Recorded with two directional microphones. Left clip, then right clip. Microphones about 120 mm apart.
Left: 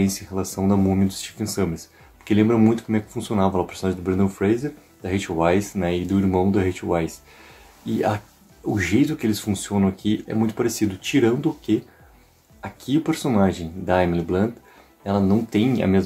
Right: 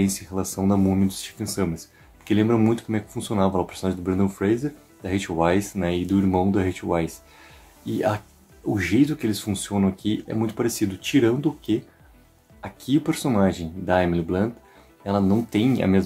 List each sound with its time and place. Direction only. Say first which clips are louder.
0.0 s speech: left 1 dB; 35° right (ahead or behind)